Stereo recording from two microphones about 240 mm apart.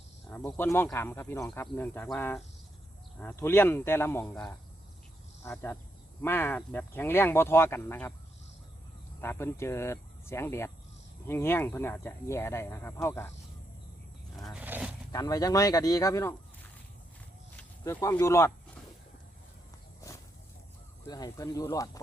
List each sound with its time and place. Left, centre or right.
0.3 s speech: centre
9.2 s speech: centre
14.6 s roaring cats: centre
15.1 s speech: centre
17.6 s speech: centre
21.0 s speech: centre